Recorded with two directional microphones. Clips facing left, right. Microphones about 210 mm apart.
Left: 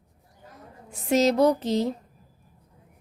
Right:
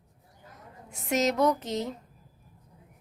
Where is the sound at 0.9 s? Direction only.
30° left (ahead or behind).